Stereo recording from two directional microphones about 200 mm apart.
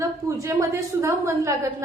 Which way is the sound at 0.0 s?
15° right (ahead or behind).